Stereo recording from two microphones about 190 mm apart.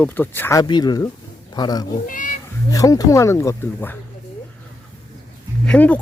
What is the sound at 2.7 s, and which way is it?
Speech, 20° left (ahead or behind).